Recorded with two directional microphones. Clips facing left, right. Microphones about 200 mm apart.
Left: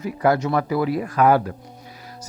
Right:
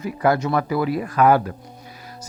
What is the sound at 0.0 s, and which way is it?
Speech, 40° left (ahead or behind).